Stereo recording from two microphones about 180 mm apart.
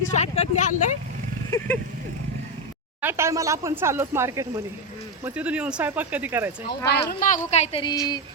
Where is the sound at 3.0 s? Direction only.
15° right (ahead or behind).